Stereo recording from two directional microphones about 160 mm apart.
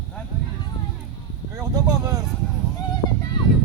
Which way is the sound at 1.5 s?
20° right (ahead or behind).